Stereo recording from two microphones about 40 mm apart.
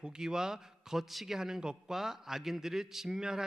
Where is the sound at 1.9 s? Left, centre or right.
Centre.